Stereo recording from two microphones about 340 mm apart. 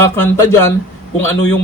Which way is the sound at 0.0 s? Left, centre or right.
Centre.